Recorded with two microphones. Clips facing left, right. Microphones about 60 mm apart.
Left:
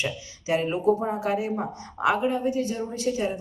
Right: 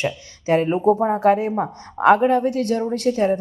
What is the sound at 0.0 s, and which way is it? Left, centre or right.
Speech, right.